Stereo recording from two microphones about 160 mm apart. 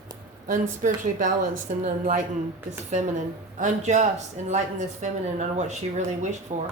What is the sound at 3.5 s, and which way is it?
Speech, 50° right (ahead or behind).